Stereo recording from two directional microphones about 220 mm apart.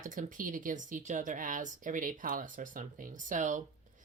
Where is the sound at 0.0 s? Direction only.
35° right (ahead or behind).